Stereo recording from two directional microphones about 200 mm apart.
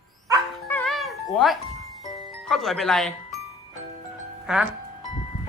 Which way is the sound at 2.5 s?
Centre (ahead or behind).